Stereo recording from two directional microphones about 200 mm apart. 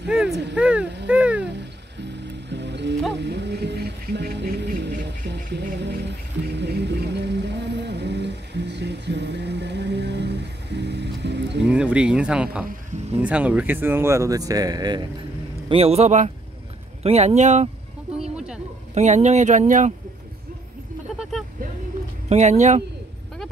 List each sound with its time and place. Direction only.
0.1 s speech: 5° right (ahead or behind)
1.0 s a sound: 5° right (ahead or behind)
1.4 s music: 60° right (ahead or behind)
11.7 s speech: 5° right (ahead or behind); by 17.6 s 35° right (ahead or behind)
18.1 s a sound: 5° right (ahead or behind)
18.9 s speech: 35° right (ahead or behind)
21.2 s vehicle: centre (ahead or behind)
22.3 s speech: 35° right (ahead or behind)